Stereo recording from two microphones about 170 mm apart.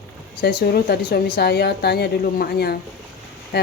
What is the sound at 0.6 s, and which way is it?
A woman's voice, 65° left (ahead or behind).